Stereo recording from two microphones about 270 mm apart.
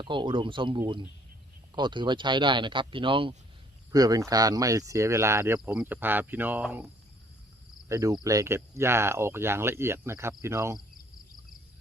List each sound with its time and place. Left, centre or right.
0.0 s speech: centre
7.9 s speech: centre